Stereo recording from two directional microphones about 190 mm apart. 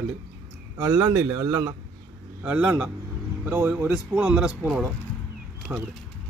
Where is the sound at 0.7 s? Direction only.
15° right (ahead or behind).